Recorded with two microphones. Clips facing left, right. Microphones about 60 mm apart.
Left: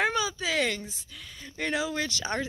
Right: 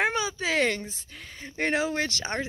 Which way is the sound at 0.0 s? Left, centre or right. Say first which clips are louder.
Right 1 dB; right.